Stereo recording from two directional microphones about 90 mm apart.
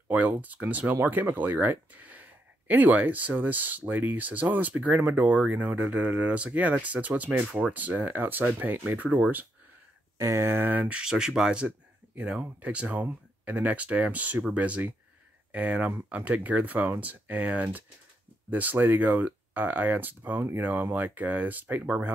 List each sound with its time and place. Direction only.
0.1 s speech: 20° right (ahead or behind)
10.1 s speech: 35° right (ahead or behind)